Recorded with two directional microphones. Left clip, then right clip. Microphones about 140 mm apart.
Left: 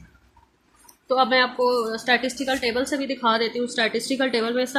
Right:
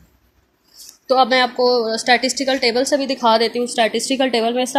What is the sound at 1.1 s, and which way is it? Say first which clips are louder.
A woman's voice: right 5 dB; 45° right (ahead or behind).